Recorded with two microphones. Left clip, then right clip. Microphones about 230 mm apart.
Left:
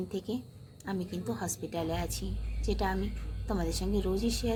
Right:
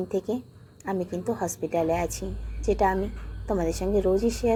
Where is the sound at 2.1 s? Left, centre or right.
Centre.